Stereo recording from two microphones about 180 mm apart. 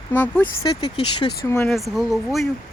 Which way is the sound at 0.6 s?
30° left (ahead or behind).